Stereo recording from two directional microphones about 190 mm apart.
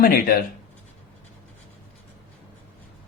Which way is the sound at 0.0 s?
50° left (ahead or behind).